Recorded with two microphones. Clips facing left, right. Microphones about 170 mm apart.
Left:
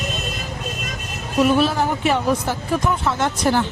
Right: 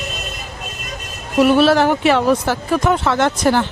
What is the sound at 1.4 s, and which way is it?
Speech, 75° right (ahead or behind).